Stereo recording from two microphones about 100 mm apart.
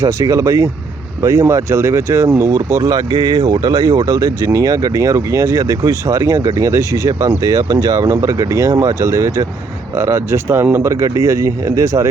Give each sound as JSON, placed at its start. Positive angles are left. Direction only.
{"t": 0.0, "sound": "speech", "side_deg": -30}